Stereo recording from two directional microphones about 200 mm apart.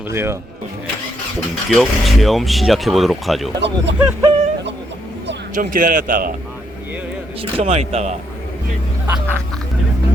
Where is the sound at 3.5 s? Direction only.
60° right (ahead or behind).